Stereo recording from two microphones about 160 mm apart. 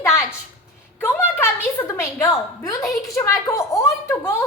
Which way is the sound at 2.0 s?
20° left (ahead or behind).